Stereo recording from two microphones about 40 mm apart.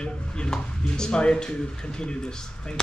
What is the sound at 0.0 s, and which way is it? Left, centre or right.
Speech, left.